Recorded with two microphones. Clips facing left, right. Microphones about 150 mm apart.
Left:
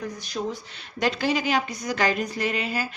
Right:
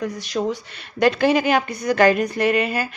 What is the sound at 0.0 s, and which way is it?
Speech, 90° right.